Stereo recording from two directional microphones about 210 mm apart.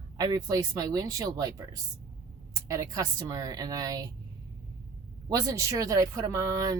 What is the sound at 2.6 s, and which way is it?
Speech, 15° right (ahead or behind).